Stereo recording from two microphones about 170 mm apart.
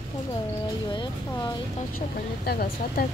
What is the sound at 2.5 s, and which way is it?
Speech, 60° left (ahead or behind).